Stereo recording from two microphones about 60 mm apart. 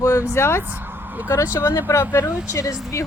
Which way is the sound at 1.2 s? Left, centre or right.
Left.